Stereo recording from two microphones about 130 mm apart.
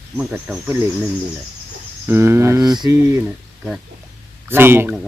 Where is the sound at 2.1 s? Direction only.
20° right (ahead or behind).